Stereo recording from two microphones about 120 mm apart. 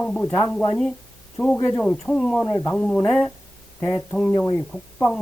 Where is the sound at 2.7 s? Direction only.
10° left (ahead or behind).